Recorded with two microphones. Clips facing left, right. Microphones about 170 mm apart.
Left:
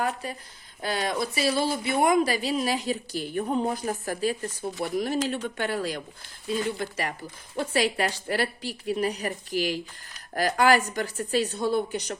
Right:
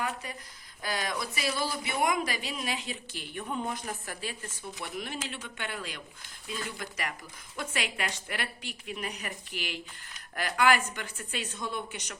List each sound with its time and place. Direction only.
0.0 s speech: 35° left (ahead or behind)